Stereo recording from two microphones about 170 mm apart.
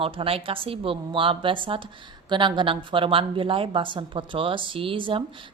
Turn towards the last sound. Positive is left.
turn(degrees=-30)  # may be behind; listen again after turning